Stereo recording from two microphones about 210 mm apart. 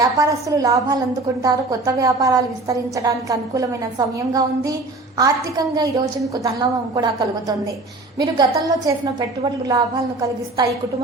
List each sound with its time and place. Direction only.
0.0 s a woman's voice: 15° right (ahead or behind)